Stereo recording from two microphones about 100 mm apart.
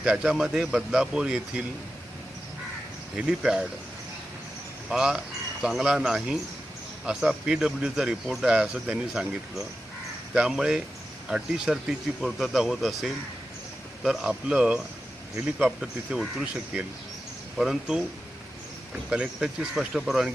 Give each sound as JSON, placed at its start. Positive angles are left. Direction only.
{"t": 0.0, "sound": "speech", "side_deg": -10}
{"t": 3.2, "sound": "speech", "side_deg": -5}
{"t": 4.9, "sound": "speech", "side_deg": -5}
{"t": 19.1, "sound": "speech", "side_deg": -10}